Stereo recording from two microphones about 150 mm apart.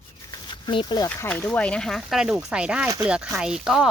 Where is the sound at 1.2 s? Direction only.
10° left (ahead or behind).